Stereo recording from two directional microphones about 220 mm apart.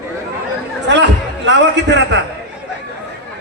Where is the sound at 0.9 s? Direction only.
55° right (ahead or behind).